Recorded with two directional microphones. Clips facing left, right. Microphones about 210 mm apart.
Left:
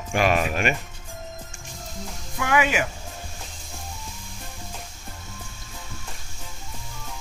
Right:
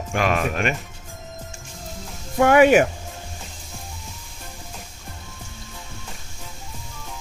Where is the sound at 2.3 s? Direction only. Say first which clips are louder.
Right 10 dB; 45° right (ahead or behind).